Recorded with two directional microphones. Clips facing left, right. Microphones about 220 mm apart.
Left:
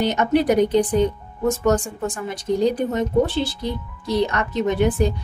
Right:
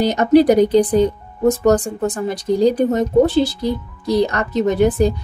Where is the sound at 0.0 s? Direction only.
35° right (ahead or behind).